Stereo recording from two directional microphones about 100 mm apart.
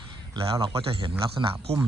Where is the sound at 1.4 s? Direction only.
45° right (ahead or behind).